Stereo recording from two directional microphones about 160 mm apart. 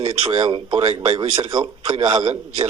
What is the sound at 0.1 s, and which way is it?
A man's voice, 35° right (ahead or behind).